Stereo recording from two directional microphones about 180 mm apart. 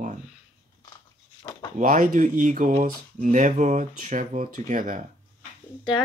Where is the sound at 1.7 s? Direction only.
45° right (ahead or behind).